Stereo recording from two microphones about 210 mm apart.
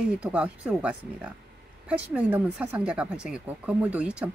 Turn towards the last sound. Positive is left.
turn(degrees=-5)  # may be behind; listen again after turning